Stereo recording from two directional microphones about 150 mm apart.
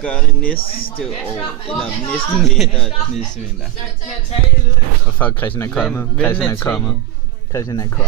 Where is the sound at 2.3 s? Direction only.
Centre (ahead or behind).